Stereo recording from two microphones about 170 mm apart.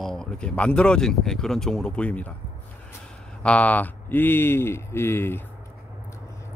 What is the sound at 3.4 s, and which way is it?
Speech, 5° left (ahead or behind).